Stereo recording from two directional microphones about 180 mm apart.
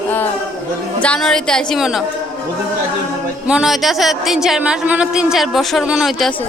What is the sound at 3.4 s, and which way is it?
Speech, 5° right (ahead or behind).